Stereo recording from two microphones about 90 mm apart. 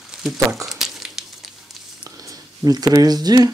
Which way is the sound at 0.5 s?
5° right (ahead or behind).